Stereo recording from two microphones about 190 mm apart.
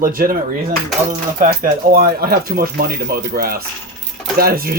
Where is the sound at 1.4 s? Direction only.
50° right (ahead or behind).